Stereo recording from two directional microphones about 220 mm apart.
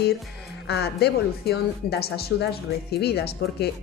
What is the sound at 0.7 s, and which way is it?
A woman's voice, 45° left (ahead or behind).